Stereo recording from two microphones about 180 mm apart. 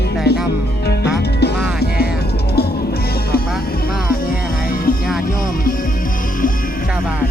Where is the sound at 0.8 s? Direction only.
65° left (ahead or behind).